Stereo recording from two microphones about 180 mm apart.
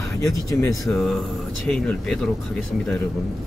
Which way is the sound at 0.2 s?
20° left (ahead or behind).